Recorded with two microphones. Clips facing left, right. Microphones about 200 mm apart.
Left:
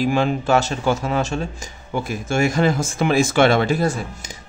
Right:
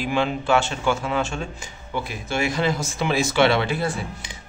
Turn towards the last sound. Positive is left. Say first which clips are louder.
# left 3 dB
turn(degrees=45)  # may be behind; listen again after turning